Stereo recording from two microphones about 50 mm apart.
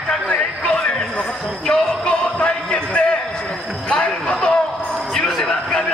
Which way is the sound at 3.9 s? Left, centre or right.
Left.